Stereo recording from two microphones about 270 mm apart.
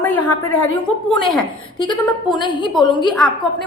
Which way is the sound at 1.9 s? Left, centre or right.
Centre.